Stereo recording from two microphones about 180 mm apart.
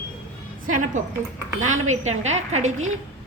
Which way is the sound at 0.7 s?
45° right (ahead or behind).